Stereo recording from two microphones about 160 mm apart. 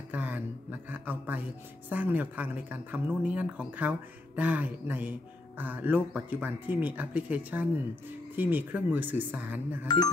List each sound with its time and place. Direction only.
0.1 s speech: 10° right (ahead or behind)
9.8 s speech: 25° left (ahead or behind)